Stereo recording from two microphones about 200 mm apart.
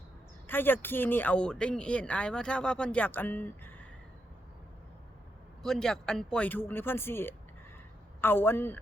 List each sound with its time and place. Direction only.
0.4 s speech: 10° left (ahead or behind)
5.6 s speech: centre (ahead or behind)